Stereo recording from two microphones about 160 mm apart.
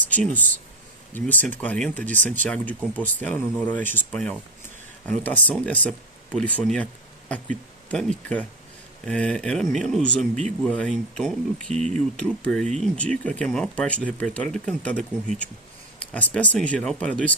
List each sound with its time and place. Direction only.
0.0 s speech: 5° left (ahead or behind)
7.9 s speech: 5° left (ahead or behind)
11.7 s speech: 45° right (ahead or behind)
11.9 s speech: 5° left (ahead or behind)